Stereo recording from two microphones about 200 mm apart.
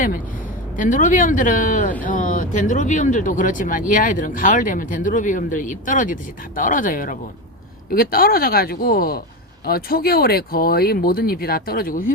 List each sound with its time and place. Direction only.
0.8 s speech: 40° left (ahead or behind)